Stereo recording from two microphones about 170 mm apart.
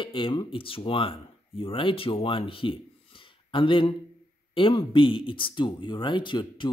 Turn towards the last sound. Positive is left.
turn(degrees=30)  # may be behind; listen again after turning